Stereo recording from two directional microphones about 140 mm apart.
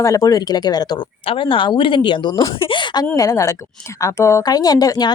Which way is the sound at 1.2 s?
40° left (ahead or behind).